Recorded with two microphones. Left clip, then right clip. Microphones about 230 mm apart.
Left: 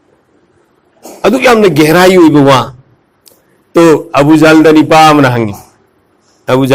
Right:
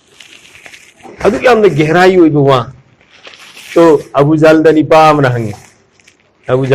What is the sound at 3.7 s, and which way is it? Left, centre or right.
A man's voice, left.